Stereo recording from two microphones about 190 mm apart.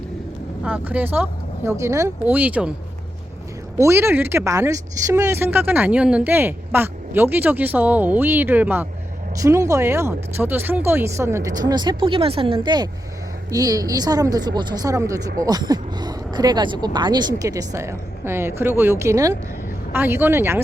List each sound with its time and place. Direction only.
0.6 s speech: 10° right (ahead or behind)
3.8 s speech: 15° right (ahead or behind)